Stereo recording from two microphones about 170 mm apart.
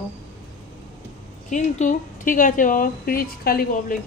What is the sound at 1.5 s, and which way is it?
A woman's voice, 50° left (ahead or behind).